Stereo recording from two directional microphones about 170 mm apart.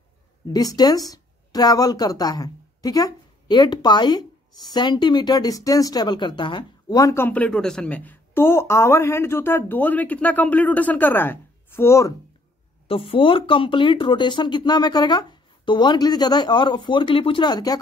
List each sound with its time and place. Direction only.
0.5 s speech: 20° left (ahead or behind)
12.8 s speech: 30° left (ahead or behind)